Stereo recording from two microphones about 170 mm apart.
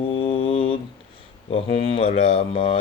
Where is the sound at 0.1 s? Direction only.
30° left (ahead or behind).